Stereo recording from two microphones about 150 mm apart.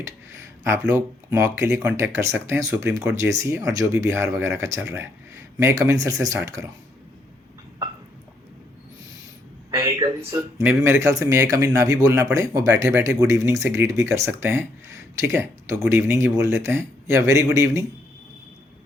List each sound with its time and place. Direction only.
0.9 s speech: 20° right (ahead or behind)
9.7 s speech: 20° right (ahead or behind)